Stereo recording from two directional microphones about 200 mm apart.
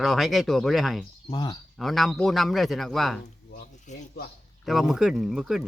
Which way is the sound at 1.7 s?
Centre (ahead or behind).